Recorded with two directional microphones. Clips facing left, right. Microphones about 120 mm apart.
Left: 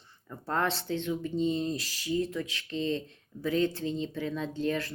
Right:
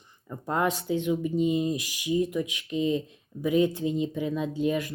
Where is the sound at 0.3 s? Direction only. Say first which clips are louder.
Right 3 dB; 15° right (ahead or behind).